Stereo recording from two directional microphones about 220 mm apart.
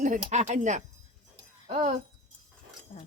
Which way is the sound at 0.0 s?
35° right (ahead or behind).